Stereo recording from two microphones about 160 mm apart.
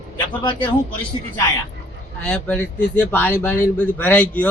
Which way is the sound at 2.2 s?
5° left (ahead or behind).